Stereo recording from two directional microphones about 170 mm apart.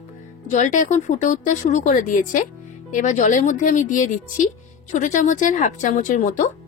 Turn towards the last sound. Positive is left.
turn(degrees=50)  # may be behind; listen again after turning